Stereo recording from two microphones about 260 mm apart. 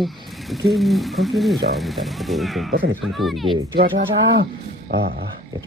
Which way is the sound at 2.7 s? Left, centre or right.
Right.